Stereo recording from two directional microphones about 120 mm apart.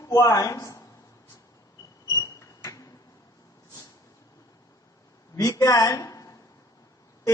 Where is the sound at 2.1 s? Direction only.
25° left (ahead or behind).